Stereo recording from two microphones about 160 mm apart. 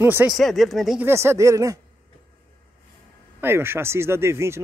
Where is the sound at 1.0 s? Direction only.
15° right (ahead or behind).